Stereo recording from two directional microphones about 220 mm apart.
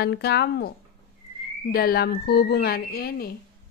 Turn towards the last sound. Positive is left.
turn(degrees=45)  # may be behind; listen again after turning